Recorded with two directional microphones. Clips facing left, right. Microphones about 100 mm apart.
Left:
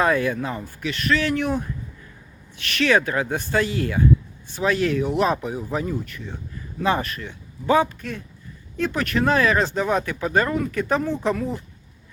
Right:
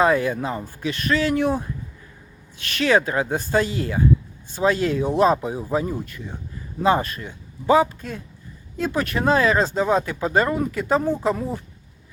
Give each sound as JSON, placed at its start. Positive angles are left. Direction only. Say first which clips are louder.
{"t": 0.0, "sound": "speech", "louder": "right 2 dB", "side_deg": -20}
{"t": 2.7, "sound": "speech", "louder": "right 1 dB", "side_deg": -20}